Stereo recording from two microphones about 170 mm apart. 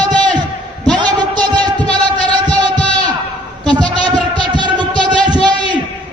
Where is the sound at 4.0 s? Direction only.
25° right (ahead or behind).